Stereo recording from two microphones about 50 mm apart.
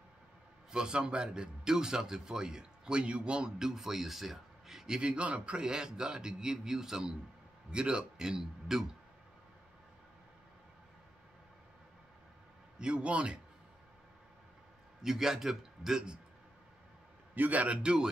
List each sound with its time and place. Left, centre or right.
0.7 s a man's voice: centre
12.7 s a man's voice: centre
15.0 s a man's voice: centre
17.4 s a man's voice: right
17.8 s a man's voice: centre